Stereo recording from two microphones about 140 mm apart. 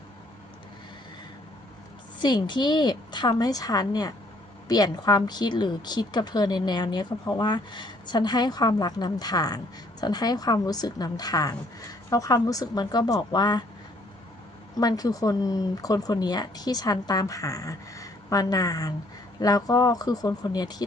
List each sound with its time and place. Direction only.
2.1 s a woman's voice: 35° left (ahead or behind)
14.8 s speech: 30° left (ahead or behind)